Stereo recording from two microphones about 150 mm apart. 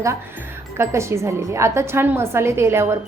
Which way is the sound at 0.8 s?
20° right (ahead or behind).